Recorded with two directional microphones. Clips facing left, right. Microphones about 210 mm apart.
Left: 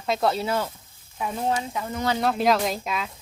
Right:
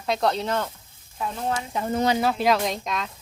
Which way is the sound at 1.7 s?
30° right (ahead or behind).